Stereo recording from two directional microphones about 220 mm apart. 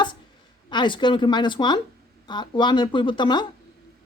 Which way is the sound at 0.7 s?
20° left (ahead or behind).